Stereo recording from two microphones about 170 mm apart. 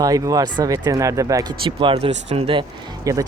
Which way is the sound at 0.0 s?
20° right (ahead or behind).